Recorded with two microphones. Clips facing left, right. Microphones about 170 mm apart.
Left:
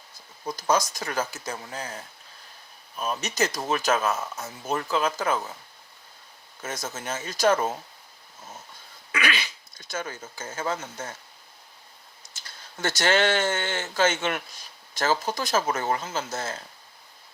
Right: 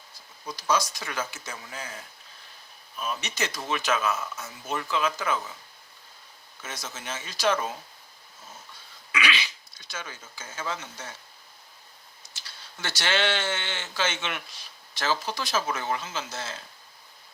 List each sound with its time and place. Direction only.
0.4 s speech: 45° left (ahead or behind)
6.6 s speech: 45° left (ahead or behind)
9.1 s speech: 50° left (ahead or behind)
12.3 s speech: 45° left (ahead or behind)